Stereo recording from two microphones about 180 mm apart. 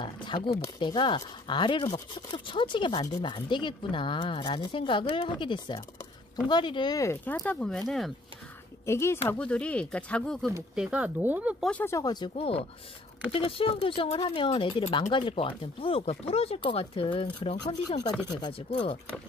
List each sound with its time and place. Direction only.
0.0 s a sound: 25° left (ahead or behind)
0.7 s speech: 25° left (ahead or behind); by 7.8 s 5° left (ahead or behind)
8.8 s speech: 15° left (ahead or behind); by 11.5 s 10° right (ahead or behind)
11.6 s speech: 10° left (ahead or behind); by 18.9 s 25° left (ahead or behind)